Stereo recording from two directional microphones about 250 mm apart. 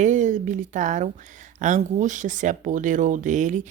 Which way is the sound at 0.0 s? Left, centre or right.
Right.